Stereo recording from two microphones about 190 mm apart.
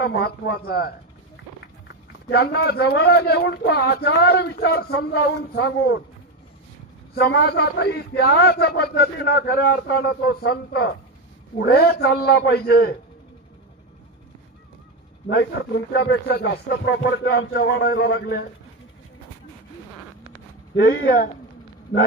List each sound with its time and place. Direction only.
0.0 s speech: 55° left (ahead or behind)
2.3 s speech: 60° left (ahead or behind)
7.2 s speech: 55° left (ahead or behind)
15.3 s speech: 60° left (ahead or behind)
20.8 s speech: 75° left (ahead or behind)